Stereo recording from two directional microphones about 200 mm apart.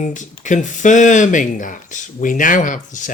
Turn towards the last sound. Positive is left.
turn(degrees=40)  # may be behind; listen again after turning